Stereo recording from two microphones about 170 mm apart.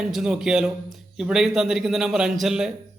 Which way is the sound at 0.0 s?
5° right (ahead or behind).